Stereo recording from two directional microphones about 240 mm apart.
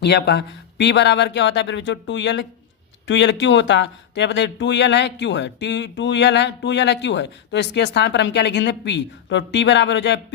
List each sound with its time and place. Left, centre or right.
0.0 s speech: left